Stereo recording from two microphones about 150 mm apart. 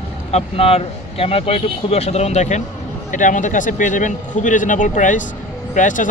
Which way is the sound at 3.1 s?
55° left (ahead or behind).